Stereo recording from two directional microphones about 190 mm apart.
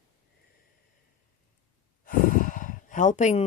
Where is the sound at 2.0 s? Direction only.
45° left (ahead or behind).